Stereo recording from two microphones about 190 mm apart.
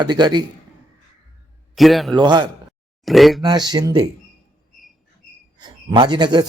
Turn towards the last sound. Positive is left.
turn(degrees=-25)  # may be behind; listen again after turning